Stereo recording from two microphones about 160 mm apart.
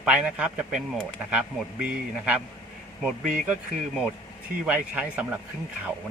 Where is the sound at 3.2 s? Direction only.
55° right (ahead or behind).